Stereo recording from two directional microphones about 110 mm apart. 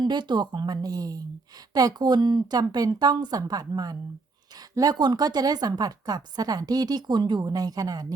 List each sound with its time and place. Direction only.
0.0 s a woman's voice: 45° right (ahead or behind)